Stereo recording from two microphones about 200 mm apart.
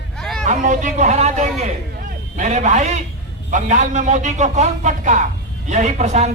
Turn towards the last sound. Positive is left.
turn(degrees=-35)  # may be behind; listen again after turning